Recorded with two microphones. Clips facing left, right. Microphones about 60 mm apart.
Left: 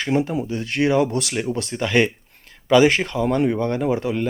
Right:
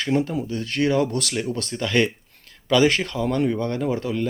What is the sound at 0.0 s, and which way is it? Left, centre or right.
A man's voice, centre.